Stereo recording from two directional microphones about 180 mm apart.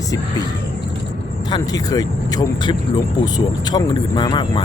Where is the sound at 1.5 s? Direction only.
20° left (ahead or behind).